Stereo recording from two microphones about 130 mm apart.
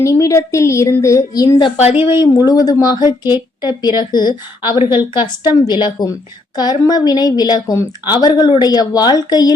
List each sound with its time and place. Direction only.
0.0 s a woman's voice: 25° left (ahead or behind)
2.0 s speech: 20° right (ahead or behind)
2.2 s a woman's voice: 30° left (ahead or behind)